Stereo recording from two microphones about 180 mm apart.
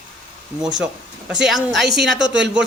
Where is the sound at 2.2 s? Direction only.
80° right.